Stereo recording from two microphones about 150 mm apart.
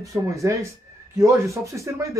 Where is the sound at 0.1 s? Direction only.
20° right (ahead or behind).